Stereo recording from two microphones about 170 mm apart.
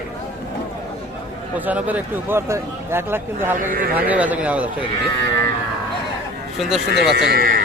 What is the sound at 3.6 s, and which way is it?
Speech, 55° right (ahead or behind).